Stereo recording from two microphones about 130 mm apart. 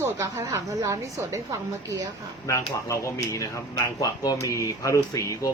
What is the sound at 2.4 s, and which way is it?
Speech, 25° left (ahead or behind).